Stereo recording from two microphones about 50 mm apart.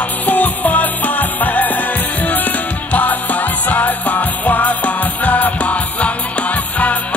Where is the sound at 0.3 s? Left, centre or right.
Left.